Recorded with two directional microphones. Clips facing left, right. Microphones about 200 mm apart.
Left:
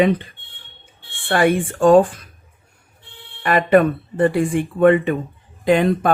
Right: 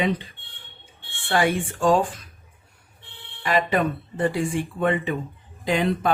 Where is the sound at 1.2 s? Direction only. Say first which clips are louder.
Left 5 dB; 55° left (ahead or behind).